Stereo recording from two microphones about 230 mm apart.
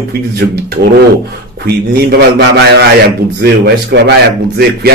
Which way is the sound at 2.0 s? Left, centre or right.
Right.